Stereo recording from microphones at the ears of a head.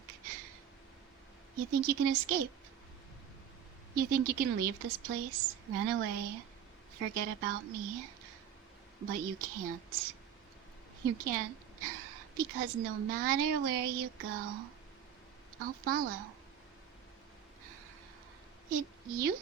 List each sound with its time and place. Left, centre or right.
0.1 s a sound: right
1.5 s a woman's voice: right
3.9 s a woman's voice: right
18.7 s a woman's voice: right